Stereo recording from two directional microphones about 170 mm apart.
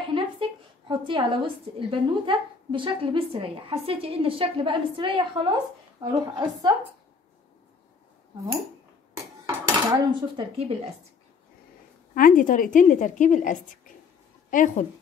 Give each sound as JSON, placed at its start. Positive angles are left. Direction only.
{"t": 0.1, "sound": "a woman's voice", "side_deg": -30}
{"t": 9.8, "sound": "speech", "side_deg": -25}
{"t": 12.1, "sound": "a woman's voice", "side_deg": 55}